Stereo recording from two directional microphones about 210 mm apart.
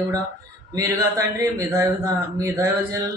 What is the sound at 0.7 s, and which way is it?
A man's voice, 15° right (ahead or behind).